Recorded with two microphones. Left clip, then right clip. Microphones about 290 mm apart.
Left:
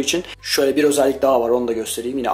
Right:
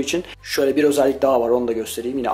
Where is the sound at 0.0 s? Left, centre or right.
Centre.